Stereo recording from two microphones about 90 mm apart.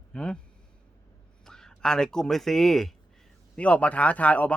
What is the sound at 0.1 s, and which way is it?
Speech, 10° left (ahead or behind).